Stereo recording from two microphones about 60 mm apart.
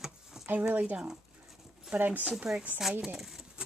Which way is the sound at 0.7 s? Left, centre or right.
Right.